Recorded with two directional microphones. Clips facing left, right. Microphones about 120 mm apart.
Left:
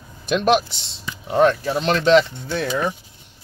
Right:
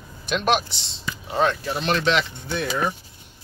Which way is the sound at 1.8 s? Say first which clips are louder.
Left 7 dB; 35° left (ahead or behind).